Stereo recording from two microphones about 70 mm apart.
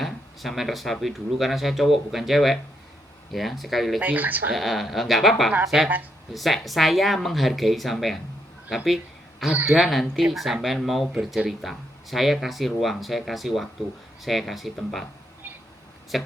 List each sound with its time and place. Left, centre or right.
0.0 s speech: centre
4.0 s speech: right
4.5 s speech: centre